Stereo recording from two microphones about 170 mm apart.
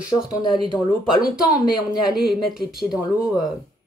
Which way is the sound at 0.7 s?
5° right (ahead or behind).